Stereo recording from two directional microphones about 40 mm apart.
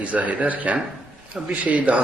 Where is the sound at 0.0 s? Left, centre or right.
Right.